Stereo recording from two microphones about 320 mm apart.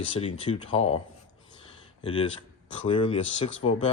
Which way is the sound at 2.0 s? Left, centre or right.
Centre.